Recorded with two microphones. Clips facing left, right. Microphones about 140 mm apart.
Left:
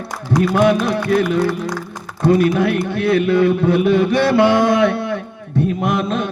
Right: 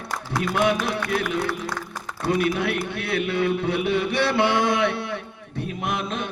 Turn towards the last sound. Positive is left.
turn(degrees=50)  # may be behind; listen again after turning